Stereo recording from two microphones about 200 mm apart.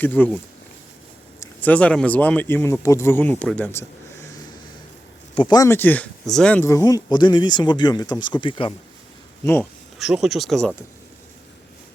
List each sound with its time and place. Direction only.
0.0 s speech: 5° left (ahead or behind)
1.4 s speech: 5° left (ahead or behind)
5.3 s speech: 25° left (ahead or behind)
9.4 s speech: 10° left (ahead or behind)
10.0 s speech: centre (ahead or behind)